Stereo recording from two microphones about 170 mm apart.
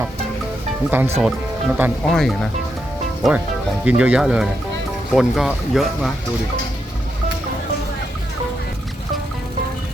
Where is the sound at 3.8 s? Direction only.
10° right (ahead or behind).